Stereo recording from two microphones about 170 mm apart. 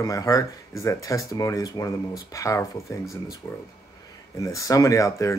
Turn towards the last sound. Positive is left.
turn(degrees=20)  # may be behind; listen again after turning